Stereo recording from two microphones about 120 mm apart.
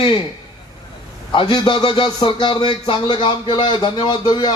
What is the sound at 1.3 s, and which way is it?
Speech, 35° left (ahead or behind).